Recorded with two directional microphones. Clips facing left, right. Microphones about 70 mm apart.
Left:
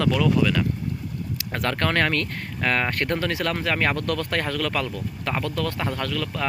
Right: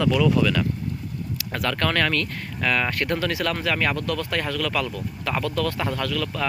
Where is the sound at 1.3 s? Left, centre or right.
Left.